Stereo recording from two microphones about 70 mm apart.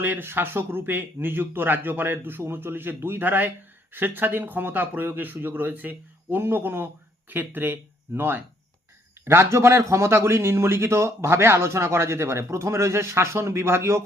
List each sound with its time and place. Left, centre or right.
0.0 s speech: right